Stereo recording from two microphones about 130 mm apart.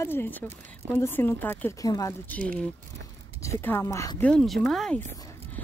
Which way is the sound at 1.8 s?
25° left (ahead or behind).